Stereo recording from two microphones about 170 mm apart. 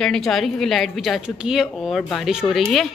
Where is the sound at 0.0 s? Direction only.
Centre (ahead or behind).